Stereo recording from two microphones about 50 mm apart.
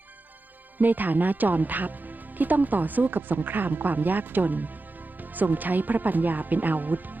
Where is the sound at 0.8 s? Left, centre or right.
Right.